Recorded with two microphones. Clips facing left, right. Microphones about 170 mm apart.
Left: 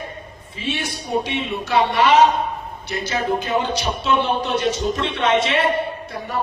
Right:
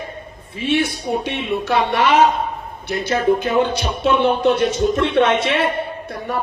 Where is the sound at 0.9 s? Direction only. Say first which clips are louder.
Right 1 dB; 55° right (ahead or behind).